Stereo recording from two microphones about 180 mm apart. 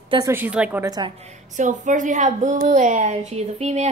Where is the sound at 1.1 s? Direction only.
40° right (ahead or behind).